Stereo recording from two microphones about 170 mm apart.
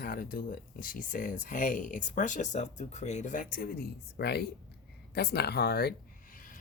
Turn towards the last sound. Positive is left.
turn(degrees=55)  # may be behind; listen again after turning